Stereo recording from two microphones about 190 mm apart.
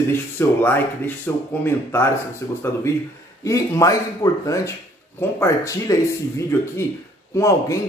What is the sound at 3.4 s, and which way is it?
Speech, 15° left (ahead or behind).